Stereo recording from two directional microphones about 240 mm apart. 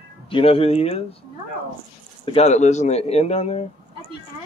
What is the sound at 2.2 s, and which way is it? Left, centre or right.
A man's voice, left.